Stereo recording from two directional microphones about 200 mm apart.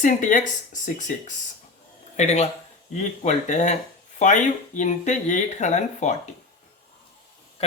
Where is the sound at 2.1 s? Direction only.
35° left (ahead or behind).